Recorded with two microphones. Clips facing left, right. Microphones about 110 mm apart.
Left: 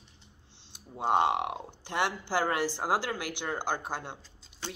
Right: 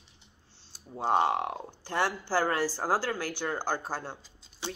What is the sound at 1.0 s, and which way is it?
Speech, 20° left (ahead or behind).